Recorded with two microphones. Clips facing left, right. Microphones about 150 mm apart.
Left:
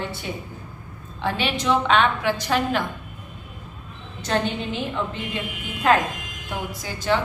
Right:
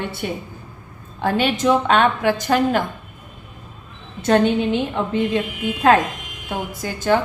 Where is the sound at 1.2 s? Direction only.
45° right (ahead or behind).